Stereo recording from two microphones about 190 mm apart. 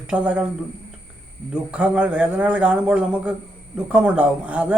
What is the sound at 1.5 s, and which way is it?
Speech, 5° right (ahead or behind).